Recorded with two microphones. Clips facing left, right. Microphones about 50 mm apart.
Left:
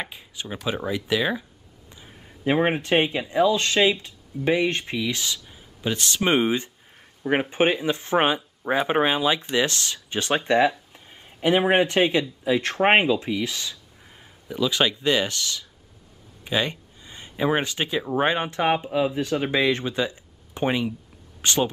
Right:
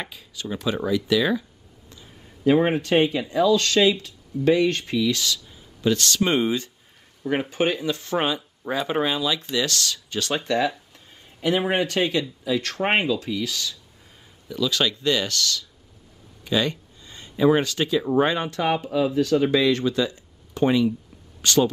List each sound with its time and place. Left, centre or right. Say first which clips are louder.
0.0 s speech: even; left